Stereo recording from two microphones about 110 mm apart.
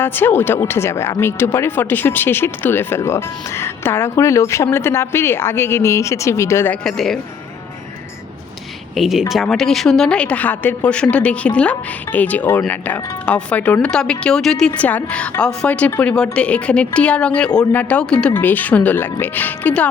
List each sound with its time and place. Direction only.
0.0 s speech: 20° left (ahead or behind)
6.8 s speech: 5° left (ahead or behind)
9.0 s a woman's voice: 5° right (ahead or behind); by 19.9 s 15° left (ahead or behind)